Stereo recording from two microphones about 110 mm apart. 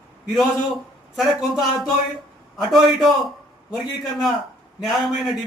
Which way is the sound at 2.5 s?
Centre (ahead or behind).